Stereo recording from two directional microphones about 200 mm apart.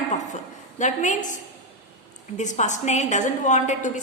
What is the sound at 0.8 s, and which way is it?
Speech, 40° left (ahead or behind).